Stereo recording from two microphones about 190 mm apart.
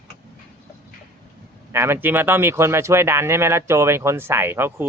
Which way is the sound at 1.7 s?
10° right (ahead or behind).